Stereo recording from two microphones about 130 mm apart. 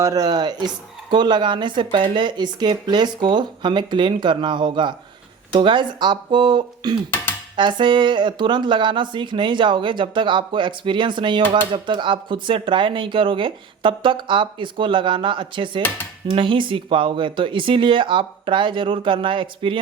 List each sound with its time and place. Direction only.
0.0 s speech: 30° right (ahead or behind)